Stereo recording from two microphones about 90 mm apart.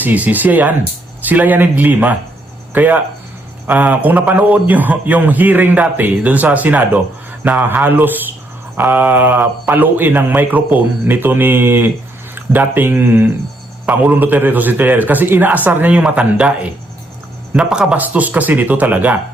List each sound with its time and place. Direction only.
0.0 s a man's voice: 20° right (ahead or behind)
17.6 s a man's voice: 10° right (ahead or behind)